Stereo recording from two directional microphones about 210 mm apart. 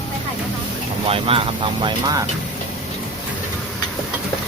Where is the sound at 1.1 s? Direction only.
25° right (ahead or behind).